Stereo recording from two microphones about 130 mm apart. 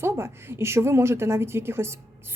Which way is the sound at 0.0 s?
20° right (ahead or behind).